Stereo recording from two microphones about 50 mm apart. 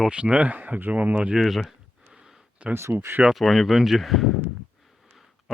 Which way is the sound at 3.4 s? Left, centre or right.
Centre.